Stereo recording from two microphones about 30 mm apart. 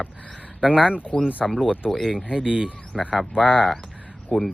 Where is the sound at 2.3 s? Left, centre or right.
Right.